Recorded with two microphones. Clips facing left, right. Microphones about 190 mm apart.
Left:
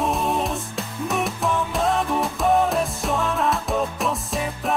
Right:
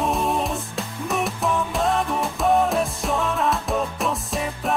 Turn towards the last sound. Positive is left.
turn(degrees=0)  # may be behind; listen again after turning